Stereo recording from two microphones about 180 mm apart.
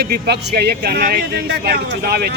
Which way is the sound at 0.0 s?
60° right (ahead or behind).